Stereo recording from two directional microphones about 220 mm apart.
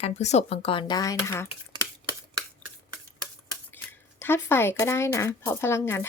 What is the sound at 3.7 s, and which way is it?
Speech, 10° left (ahead or behind).